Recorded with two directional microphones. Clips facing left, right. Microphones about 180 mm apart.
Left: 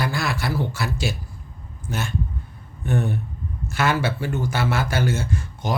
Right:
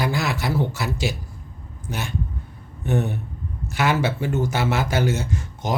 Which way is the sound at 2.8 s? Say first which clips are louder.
Even; 20° right (ahead or behind).